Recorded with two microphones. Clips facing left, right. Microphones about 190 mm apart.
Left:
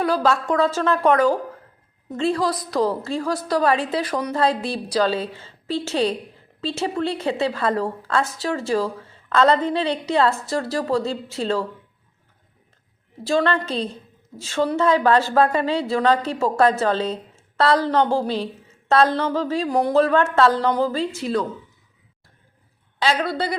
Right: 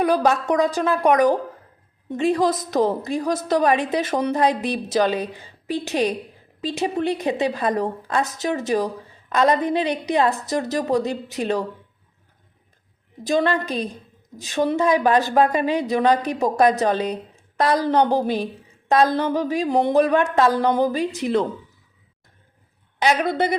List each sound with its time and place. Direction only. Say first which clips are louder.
0.0 s a woman's voice: right 1 dB; 20° right (ahead or behind)
13.2 s a woman's voice: even; 15° right (ahead or behind)
23.0 s a woman's voice: right 2 dB; 20° right (ahead or behind)